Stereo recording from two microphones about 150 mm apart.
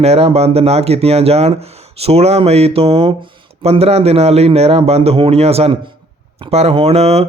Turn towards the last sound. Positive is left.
turn(degrees=-45)  # may be behind; listen again after turning